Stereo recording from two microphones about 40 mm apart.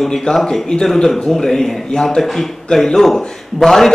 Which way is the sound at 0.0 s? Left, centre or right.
Centre.